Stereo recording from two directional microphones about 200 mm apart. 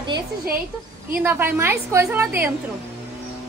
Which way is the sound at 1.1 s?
10° right (ahead or behind).